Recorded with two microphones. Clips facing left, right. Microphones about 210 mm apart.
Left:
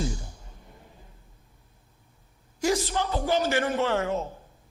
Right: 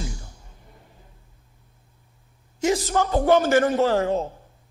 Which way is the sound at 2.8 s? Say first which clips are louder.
Right 7 dB; 45° right (ahead or behind).